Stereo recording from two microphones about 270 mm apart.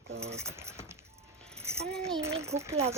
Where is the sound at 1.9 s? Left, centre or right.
Centre.